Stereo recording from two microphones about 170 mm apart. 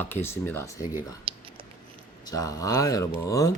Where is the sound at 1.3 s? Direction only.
35° right (ahead or behind).